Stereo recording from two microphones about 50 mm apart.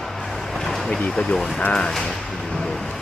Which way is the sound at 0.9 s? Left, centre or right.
Centre.